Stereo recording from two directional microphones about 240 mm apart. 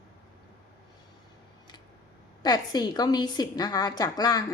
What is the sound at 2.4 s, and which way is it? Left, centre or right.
A woman's voice, centre.